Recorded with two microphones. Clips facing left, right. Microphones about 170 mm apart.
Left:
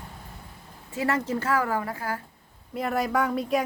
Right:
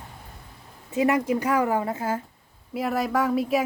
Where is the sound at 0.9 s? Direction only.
15° right (ahead or behind).